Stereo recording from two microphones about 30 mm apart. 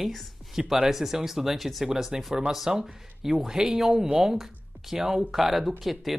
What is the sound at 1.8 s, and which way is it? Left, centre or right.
Speech, centre.